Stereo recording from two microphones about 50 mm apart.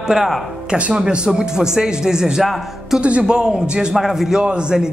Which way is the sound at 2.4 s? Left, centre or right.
Centre.